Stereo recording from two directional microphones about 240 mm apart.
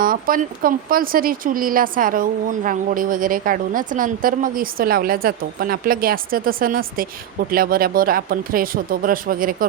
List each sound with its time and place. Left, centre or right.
0.0 s speech: right